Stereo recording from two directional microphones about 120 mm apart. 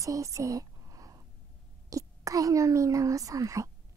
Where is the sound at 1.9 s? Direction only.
30° right (ahead or behind).